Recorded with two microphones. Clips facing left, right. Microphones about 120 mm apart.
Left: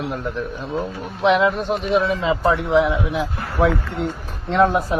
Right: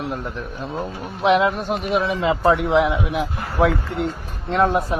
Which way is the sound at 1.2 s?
Centre (ahead or behind).